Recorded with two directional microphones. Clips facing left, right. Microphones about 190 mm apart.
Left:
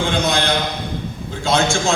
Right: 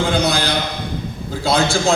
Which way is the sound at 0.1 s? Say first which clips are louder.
Right 2 dB; 35° right (ahead or behind).